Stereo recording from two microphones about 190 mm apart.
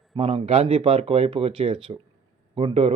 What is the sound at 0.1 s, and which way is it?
Speech, 30° right (ahead or behind).